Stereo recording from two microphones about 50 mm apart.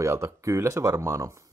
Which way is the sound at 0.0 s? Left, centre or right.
Right.